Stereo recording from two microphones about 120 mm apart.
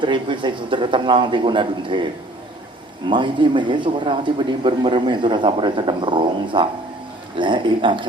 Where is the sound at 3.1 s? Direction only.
40° right (ahead or behind).